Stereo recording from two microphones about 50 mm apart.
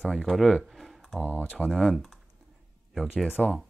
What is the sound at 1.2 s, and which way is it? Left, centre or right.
Speech, left.